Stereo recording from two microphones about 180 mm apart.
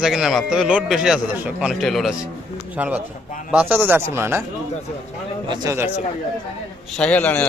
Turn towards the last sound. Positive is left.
turn(degrees=10)  # may be behind; listen again after turning